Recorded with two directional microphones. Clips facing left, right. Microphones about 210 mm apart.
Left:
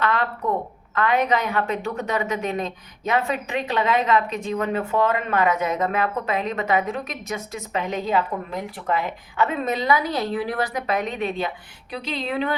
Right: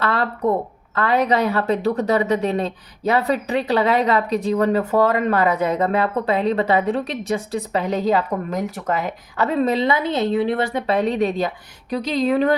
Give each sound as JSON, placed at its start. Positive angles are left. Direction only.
{"t": 0.0, "sound": "a woman's voice", "side_deg": -35}